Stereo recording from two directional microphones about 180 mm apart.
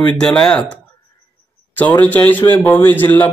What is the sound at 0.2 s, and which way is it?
Speech, 5° left (ahead or behind).